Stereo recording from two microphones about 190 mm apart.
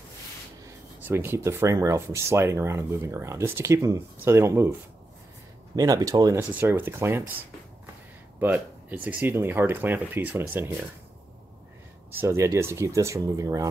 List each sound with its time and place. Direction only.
0.7 s speech: 10° right (ahead or behind)
5.8 s speech: 20° right (ahead or behind)
8.4 s speech: 10° right (ahead or behind)
12.1 s speech: 10° right (ahead or behind)